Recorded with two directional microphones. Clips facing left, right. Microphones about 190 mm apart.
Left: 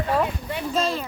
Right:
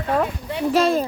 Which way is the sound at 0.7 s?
70° right (ahead or behind).